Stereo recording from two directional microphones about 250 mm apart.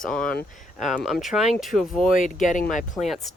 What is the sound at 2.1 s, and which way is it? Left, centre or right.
Speech, left.